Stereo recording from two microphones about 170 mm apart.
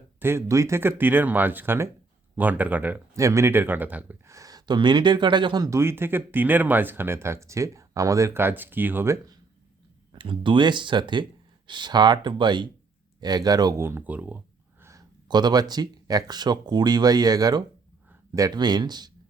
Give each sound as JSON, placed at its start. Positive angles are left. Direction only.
{"t": 0.2, "sound": "speech", "side_deg": -15}
{"t": 10.1, "sound": "speech", "side_deg": -30}